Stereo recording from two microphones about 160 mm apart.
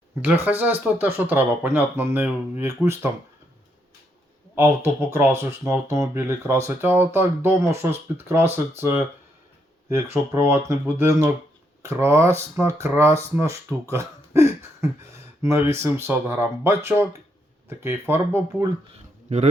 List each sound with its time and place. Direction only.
0.4 s speech: 10° right (ahead or behind)
4.5 s speech: 15° right (ahead or behind)
9.9 s speech: 15° right (ahead or behind)